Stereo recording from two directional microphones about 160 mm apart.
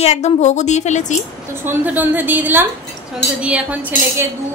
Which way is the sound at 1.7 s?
10° right (ahead or behind).